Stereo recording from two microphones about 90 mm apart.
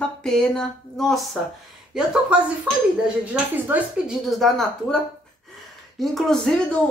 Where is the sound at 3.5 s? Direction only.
20° right (ahead or behind).